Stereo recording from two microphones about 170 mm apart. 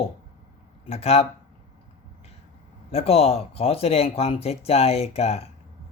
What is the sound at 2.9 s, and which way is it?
Speech, 35° left (ahead or behind).